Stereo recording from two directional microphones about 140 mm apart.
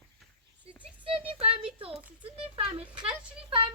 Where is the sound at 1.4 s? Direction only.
40° right (ahead or behind).